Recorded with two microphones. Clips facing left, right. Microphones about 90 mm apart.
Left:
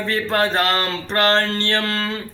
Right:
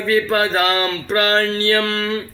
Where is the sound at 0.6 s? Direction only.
40° left (ahead or behind).